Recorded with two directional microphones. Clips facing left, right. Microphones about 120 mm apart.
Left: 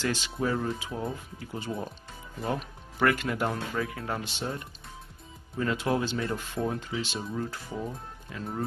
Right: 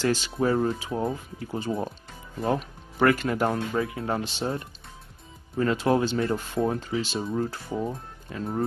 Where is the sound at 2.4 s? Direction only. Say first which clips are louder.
Right 5 dB; 35° right (ahead or behind).